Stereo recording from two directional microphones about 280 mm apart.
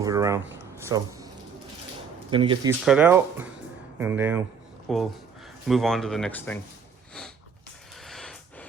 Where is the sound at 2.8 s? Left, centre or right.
Centre.